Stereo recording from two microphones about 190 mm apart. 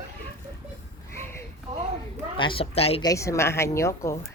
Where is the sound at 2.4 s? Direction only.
25° left (ahead or behind).